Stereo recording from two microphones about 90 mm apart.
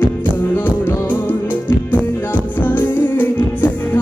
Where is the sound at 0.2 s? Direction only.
20° left (ahead or behind).